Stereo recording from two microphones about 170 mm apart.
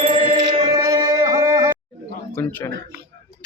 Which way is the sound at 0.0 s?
35° right (ahead or behind).